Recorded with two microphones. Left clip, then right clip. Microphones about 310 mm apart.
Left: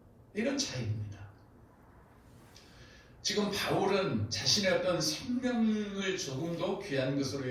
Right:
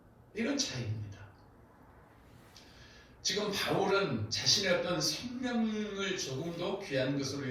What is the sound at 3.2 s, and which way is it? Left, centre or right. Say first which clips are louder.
A man's voice: left 1 dB; left.